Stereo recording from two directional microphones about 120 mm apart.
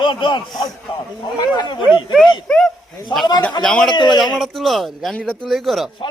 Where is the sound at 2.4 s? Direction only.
5° left (ahead or behind).